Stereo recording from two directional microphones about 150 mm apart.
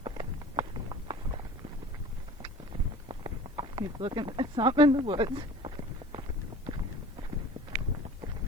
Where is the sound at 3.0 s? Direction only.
30° right (ahead or behind).